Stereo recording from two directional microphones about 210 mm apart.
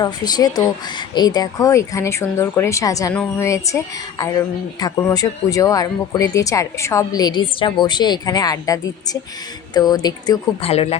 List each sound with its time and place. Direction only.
0.0 s speech: 20° left (ahead or behind)